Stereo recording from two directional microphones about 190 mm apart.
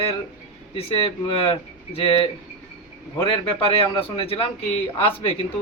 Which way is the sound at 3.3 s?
30° left (ahead or behind).